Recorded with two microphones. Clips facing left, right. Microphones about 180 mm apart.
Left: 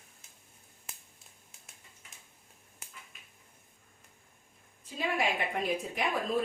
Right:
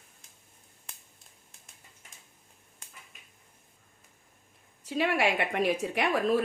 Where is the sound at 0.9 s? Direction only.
5° left (ahead or behind).